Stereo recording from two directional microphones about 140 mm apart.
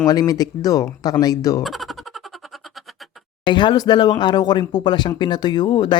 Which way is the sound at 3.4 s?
30° left (ahead or behind).